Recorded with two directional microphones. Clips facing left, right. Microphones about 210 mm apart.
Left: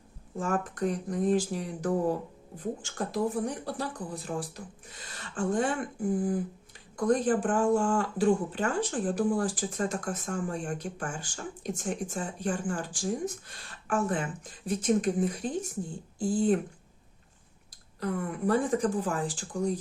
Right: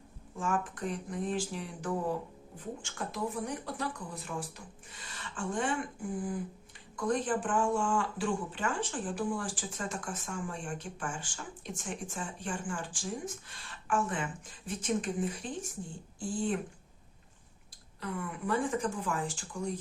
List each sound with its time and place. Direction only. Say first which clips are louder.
0.3 s speech: left 4 dB; 40° left (ahead or behind)
18.0 s speech: left 7 dB; 40° left (ahead or behind)